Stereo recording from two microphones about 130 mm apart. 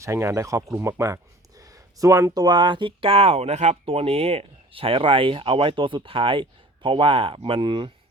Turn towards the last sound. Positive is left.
turn(degrees=-40)  # may be behind; listen again after turning